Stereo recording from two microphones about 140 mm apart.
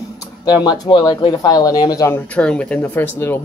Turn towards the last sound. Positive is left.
turn(degrees=15)  # may be behind; listen again after turning